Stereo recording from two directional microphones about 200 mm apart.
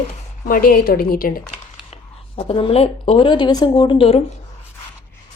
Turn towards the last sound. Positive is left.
turn(degrees=30)  # may be behind; listen again after turning